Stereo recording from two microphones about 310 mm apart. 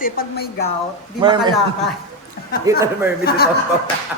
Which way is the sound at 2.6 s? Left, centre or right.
Centre.